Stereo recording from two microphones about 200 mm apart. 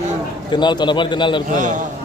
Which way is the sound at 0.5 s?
20° left (ahead or behind).